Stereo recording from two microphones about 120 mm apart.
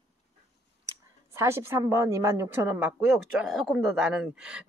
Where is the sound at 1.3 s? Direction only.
20° right (ahead or behind).